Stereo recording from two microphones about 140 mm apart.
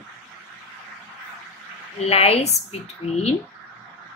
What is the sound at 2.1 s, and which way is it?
Speech, 45° left (ahead or behind).